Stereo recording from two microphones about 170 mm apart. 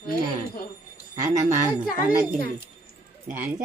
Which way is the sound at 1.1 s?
20° right (ahead or behind).